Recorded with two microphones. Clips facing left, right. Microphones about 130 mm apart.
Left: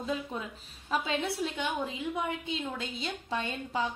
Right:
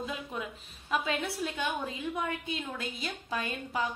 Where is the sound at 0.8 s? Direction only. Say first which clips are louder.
Left 1 dB; 30° left (ahead or behind).